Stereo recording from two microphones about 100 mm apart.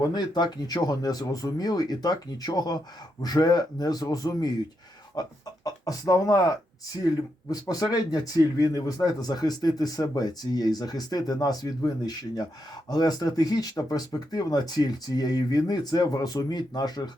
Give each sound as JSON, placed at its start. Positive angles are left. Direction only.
{"t": 0.0, "sound": "speech", "side_deg": 45}
{"t": 7.5, "sound": "speech", "side_deg": 40}